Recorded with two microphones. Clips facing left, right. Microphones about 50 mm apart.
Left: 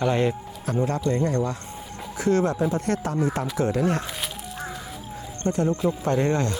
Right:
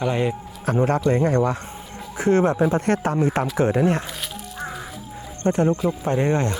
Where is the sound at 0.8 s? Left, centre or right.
Right.